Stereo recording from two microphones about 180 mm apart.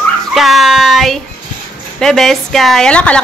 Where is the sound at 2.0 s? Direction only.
Centre (ahead or behind).